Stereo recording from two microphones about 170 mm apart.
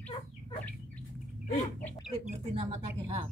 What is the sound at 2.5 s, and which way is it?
Speech, 40° right (ahead or behind).